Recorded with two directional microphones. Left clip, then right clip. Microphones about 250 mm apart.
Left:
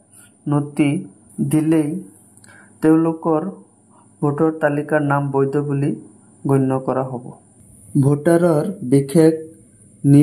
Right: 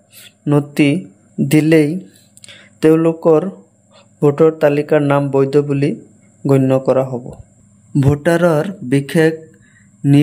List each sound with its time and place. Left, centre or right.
0.5 s speech: right